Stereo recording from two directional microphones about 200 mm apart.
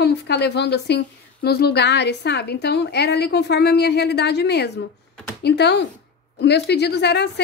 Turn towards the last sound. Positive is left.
turn(degrees=55)  # may be behind; listen again after turning